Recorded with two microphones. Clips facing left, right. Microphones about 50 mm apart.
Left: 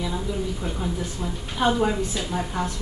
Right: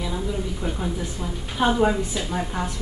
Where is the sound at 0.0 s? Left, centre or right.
Centre.